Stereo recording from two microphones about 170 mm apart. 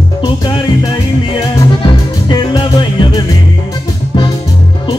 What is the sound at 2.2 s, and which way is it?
Music, 25° left (ahead or behind).